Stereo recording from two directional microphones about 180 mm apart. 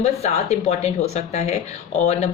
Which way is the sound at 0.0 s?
40° left (ahead or behind).